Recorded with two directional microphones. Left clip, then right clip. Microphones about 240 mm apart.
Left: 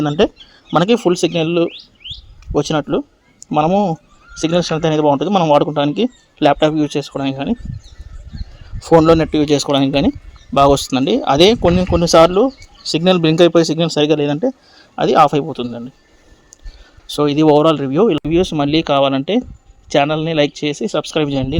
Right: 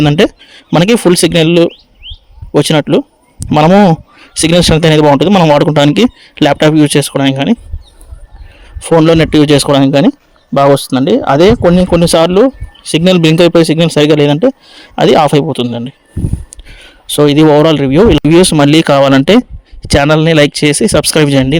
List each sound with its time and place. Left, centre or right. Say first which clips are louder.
0.0 s speech: right 6 dB; right
8.8 s speech: right 3 dB; right